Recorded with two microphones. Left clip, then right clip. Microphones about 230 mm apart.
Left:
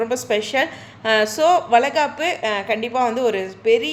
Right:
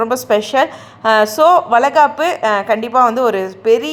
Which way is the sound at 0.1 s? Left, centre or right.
Right.